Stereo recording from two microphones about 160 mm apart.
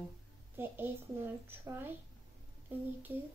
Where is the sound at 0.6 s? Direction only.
15° right (ahead or behind).